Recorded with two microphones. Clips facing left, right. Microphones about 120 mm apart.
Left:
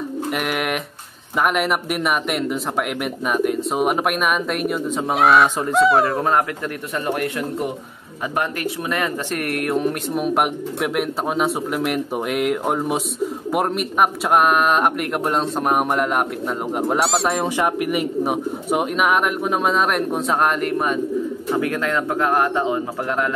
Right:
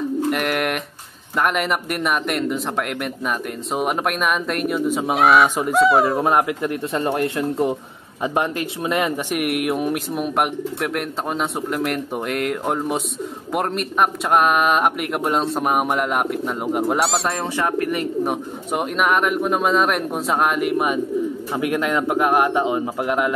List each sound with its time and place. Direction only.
0.3 s speech: centre (ahead or behind)
6.2 s speech: 20° right (ahead or behind)
7.0 s speech: 30° right (ahead or behind); by 10.2 s 10° right (ahead or behind)
10.2 s speech: centre (ahead or behind)
17.6 s speech: 15° left (ahead or behind); by 23.3 s 15° right (ahead or behind)